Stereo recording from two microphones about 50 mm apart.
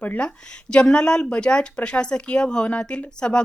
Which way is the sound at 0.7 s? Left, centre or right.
Centre.